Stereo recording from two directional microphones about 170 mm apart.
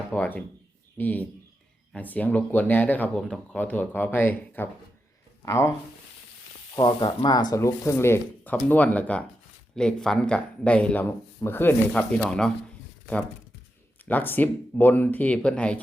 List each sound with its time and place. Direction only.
0.1 s speech: 10° left (ahead or behind)
6.7 s speech: 25° left (ahead or behind); by 12.2 s 10° left (ahead or behind)
14.0 s speech: 10° left (ahead or behind)